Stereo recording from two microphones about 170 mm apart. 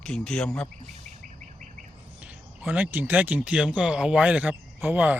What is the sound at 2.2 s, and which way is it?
Speech, 10° right (ahead or behind).